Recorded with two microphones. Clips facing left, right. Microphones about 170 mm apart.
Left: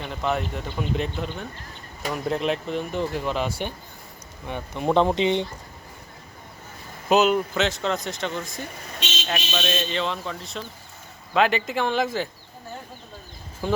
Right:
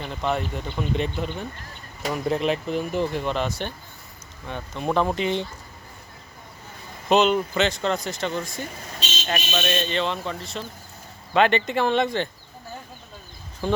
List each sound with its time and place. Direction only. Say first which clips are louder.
0.0 s speech: even; centre (ahead or behind); by 5.5 s 20° left (ahead or behind)
7.1 s speech: even; 5° left (ahead or behind)
13.6 s speech: right 1 dB; centre (ahead or behind)